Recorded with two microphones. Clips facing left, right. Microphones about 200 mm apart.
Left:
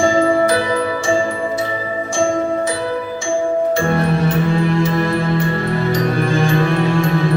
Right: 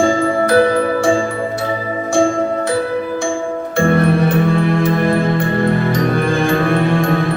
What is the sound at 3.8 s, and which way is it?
Music, 55° right (ahead or behind).